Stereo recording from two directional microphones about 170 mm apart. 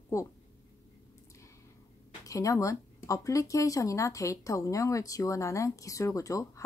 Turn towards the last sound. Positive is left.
turn(degrees=20)  # may be behind; listen again after turning